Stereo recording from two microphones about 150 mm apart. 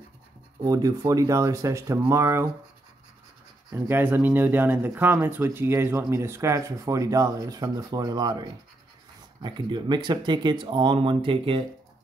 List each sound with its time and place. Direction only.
0.7 s speech: 25° right (ahead or behind)
3.7 s speech: 15° right (ahead or behind); by 11.6 s 35° right (ahead or behind)